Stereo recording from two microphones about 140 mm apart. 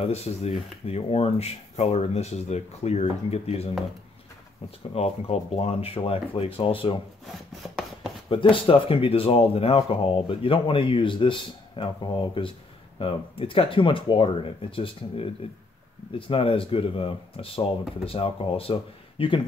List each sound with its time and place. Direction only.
0.0 s speech: 50° left (ahead or behind)
4.9 s speech: 50° left (ahead or behind)
8.3 s speech: 40° left (ahead or behind)